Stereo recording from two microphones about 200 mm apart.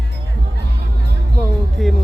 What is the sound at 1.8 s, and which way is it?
Music, centre (ahead or behind).